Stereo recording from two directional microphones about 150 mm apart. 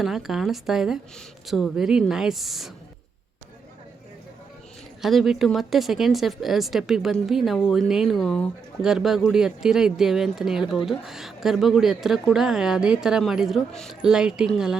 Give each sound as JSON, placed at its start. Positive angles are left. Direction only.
{"t": 0.0, "sound": "speech", "side_deg": 0}
{"t": 5.0, "sound": "speech", "side_deg": 0}